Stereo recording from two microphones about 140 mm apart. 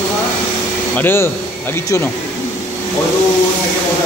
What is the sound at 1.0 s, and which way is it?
Speech, 15° left (ahead or behind).